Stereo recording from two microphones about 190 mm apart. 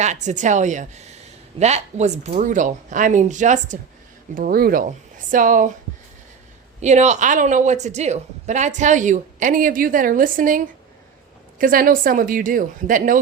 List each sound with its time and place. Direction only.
0.0 s a woman's voice: 40° right (ahead or behind)
6.8 s a woman's voice: 35° right (ahead or behind)
11.6 s a woman's voice: 45° right (ahead or behind)